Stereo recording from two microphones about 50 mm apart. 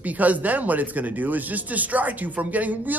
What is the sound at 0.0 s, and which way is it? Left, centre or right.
Speech, right.